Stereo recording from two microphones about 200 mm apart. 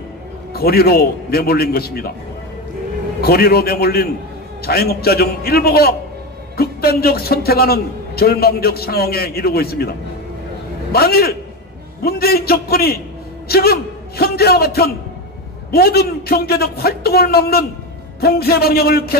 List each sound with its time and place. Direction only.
0.5 s a man's voice: 50° left (ahead or behind)
3.2 s a man's voice: 50° left (ahead or behind)
10.9 s a man's voice: 50° left (ahead or behind)